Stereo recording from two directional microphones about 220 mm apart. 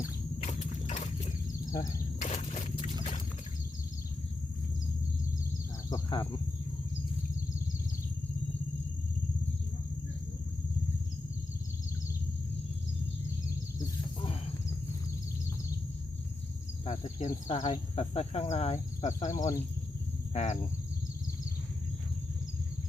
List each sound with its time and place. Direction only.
0.4 s vehicle: 35° left (ahead or behind)
1.7 s arrow: 15° left (ahead or behind)
2.1 s a sound: 30° left (ahead or behind)
5.9 s speech: 20° left (ahead or behind)
16.8 s speech: 30° left (ahead or behind)
20.3 s a sound: 30° left (ahead or behind)